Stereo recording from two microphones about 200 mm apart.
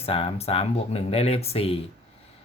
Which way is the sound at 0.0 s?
30° left (ahead or behind).